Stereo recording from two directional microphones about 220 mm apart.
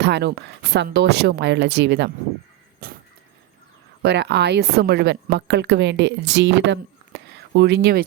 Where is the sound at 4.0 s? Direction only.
50° right (ahead or behind).